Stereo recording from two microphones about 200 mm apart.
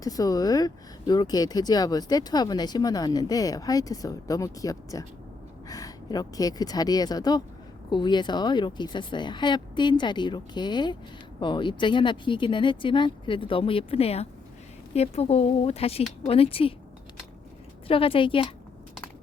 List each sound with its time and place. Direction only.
0.0 s speech: 20° left (ahead or behind)
17.8 s speech: 25° left (ahead or behind)